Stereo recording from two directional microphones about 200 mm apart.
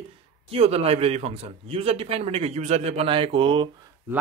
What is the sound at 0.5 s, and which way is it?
A man's voice, 30° right (ahead or behind).